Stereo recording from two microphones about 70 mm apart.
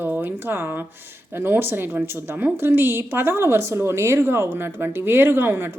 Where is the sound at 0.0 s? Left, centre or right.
Right.